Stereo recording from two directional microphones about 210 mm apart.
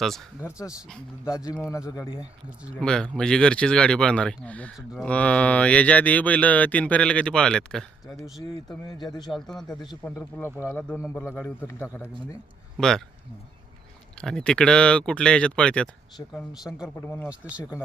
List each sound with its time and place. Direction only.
0.4 s speech: 10° left (ahead or behind)
2.8 s speech: 5° left (ahead or behind)
8.9 s speech: 20° left (ahead or behind)
9.3 s speech: centre (ahead or behind)
9.8 s speech: 15° left (ahead or behind)
14.2 s speech: 5° left (ahead or behind)
16.1 s speech: 15° left (ahead or behind)
17.2 s speech: 5° right (ahead or behind)